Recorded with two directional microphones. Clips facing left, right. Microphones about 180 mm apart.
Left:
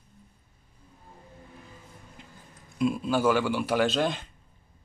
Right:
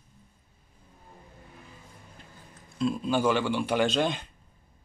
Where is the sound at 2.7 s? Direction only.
10° left (ahead or behind).